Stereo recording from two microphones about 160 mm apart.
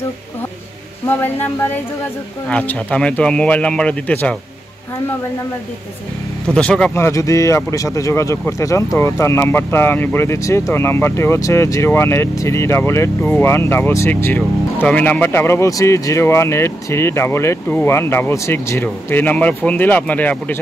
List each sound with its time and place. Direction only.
1.0 s speech: 15° left (ahead or behind)
6.5 s speech: 5° left (ahead or behind)
7.0 s speech: 20° left (ahead or behind)